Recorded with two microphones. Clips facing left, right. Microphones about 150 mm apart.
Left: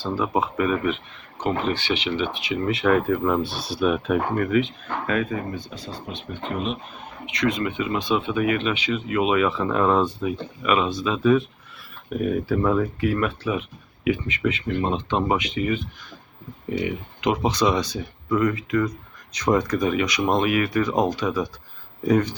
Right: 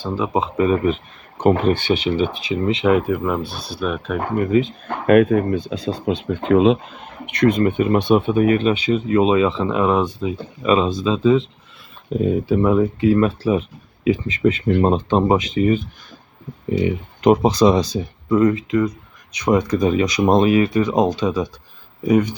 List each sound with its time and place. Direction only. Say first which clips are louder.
0.0 s speech: right 2 dB; 20° right (ahead or behind)
1.4 s speech: right 8 dB; 50° right (ahead or behind)
2.5 s speech: right 3 dB; 20° right (ahead or behind)
3.1 s speech: right 1 dB; 5° right (ahead or behind)
4.4 s speech: right 7 dB; 25° right (ahead or behind)
5.0 s speech: right 13 dB; 60° right (ahead or behind)
6.1 s speech: right 14 dB; 90° right
7.3 s speech: right 8 dB; 55° right (ahead or behind); by 15.8 s 40° right (ahead or behind)
17.3 s speech: right 5 dB; 35° right (ahead or behind)
18.3 s speech: right 6 dB; 25° right (ahead or behind)
22.0 s speech: right 3 dB; 10° right (ahead or behind)